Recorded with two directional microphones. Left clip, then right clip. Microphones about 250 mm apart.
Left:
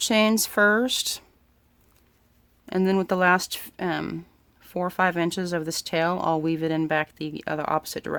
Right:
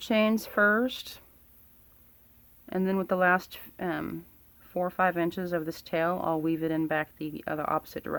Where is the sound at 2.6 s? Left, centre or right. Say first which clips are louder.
Left 6 dB; left.